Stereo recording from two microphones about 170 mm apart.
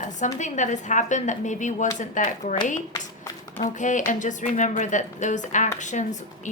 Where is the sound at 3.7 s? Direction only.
45° left (ahead or behind).